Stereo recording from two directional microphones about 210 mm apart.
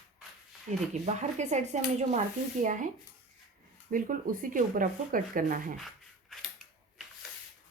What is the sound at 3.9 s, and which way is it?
Speech, 40° right (ahead or behind).